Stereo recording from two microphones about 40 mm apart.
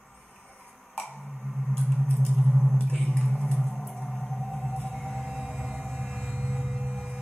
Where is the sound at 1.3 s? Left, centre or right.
Centre.